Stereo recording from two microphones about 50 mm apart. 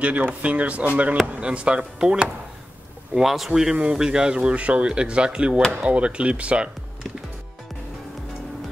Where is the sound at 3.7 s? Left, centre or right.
Right.